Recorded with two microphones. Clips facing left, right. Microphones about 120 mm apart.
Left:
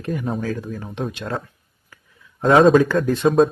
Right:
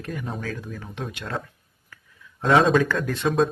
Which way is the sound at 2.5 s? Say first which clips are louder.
Left 6 dB; 40° left (ahead or behind).